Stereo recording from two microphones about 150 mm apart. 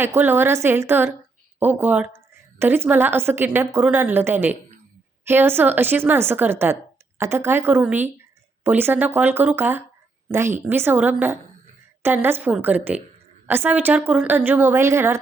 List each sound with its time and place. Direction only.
0.0 s a woman's voice: 15° right (ahead or behind)